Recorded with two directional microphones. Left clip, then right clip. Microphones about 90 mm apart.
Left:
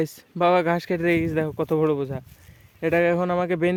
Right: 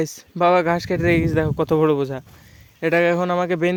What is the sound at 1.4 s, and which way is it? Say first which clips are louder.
Speech: right 4 dB; 65° right (ahead or behind).